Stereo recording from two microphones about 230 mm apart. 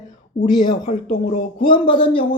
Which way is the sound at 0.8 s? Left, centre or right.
Left.